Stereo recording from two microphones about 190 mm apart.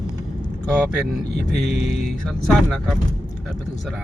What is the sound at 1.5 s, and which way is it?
Mantra, 35° left (ahead or behind).